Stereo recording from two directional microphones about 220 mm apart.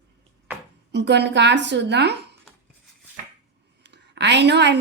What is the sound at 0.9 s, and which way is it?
A woman's voice, 50° right (ahead or behind).